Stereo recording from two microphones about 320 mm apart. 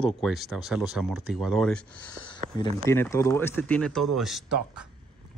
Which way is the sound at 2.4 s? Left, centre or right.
Right.